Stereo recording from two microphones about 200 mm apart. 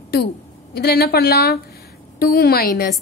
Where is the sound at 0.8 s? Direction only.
55° left (ahead or behind).